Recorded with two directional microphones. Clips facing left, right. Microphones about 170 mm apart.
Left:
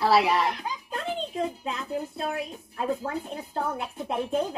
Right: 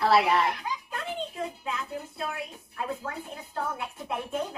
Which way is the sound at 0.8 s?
30° left (ahead or behind).